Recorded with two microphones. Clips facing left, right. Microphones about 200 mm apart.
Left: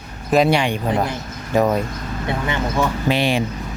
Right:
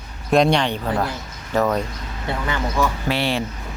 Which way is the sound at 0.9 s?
20° left (ahead or behind).